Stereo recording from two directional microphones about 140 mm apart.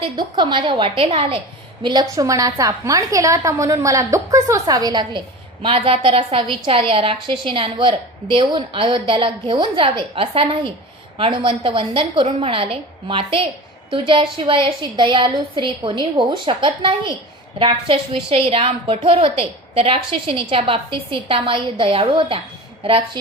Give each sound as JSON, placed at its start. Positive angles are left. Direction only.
{"t": 0.2, "sound": "a woman's voice", "side_deg": -35}
{"t": 1.8, "sound": "a woman's voice", "side_deg": -30}
{"t": 5.6, "sound": "a woman's voice", "side_deg": -40}